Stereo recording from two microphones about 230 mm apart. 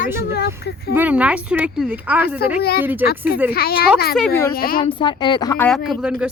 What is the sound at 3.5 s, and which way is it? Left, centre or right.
Speech, left.